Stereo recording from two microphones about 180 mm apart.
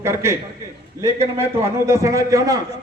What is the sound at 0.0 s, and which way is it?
Speech, 15° right (ahead or behind).